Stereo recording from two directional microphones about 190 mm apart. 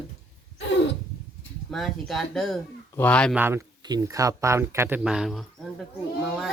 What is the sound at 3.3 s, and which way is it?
Speech, 10° right (ahead or behind).